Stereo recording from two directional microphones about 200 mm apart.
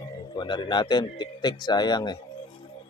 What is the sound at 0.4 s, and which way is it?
Speech, 25° left (ahead or behind).